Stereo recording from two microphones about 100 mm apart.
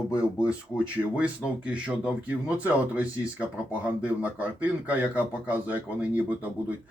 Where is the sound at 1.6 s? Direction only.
10° right (ahead or behind).